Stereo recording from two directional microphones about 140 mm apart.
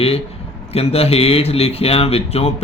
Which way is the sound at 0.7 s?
45° left (ahead or behind).